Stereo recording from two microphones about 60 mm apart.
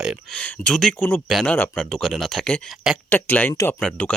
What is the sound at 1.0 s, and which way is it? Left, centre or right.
Speech, left.